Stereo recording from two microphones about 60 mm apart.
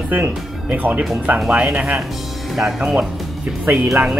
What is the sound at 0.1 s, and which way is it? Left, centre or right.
Speech, right.